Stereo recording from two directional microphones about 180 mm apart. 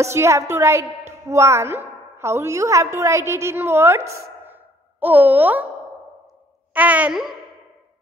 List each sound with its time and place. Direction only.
0.0 s a woman's voice: 15° right (ahead or behind)
6.7 s a woman's voice: 10° right (ahead or behind)